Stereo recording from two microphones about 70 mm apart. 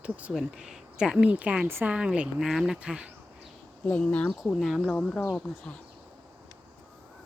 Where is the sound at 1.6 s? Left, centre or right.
Right.